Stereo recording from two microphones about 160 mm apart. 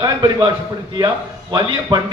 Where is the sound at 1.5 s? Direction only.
25° right (ahead or behind).